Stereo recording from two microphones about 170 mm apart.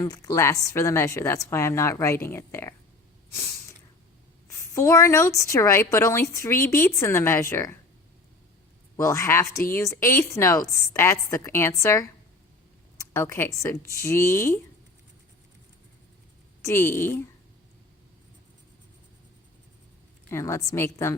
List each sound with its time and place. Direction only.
0.0 s a woman's voice: 20° left (ahead or behind)
3.3 s snort: 15° left (ahead or behind)
4.4 s a woman's voice: 15° left (ahead or behind)
9.0 s a woman's voice: 15° left (ahead or behind)
16.6 s a woman's voice: 15° left (ahead or behind)
20.3 s a woman's voice: 15° left (ahead or behind)